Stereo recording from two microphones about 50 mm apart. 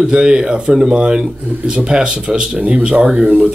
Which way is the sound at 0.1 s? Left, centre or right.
Centre.